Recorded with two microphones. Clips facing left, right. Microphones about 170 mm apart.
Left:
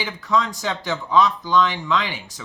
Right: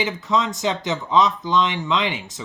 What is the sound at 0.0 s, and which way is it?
Speech, 20° right (ahead or behind).